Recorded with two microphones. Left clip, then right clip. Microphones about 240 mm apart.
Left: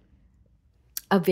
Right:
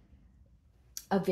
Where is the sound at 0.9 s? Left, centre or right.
Left.